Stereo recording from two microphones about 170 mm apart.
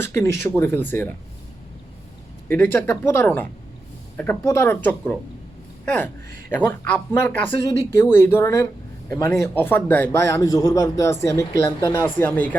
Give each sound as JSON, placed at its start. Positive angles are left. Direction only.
{"t": 0.0, "sound": "speech", "side_deg": 15}
{"t": 2.5, "sound": "a man's voice", "side_deg": 10}